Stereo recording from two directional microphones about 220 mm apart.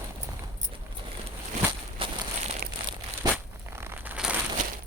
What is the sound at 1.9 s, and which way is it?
Walk, 25° right (ahead or behind).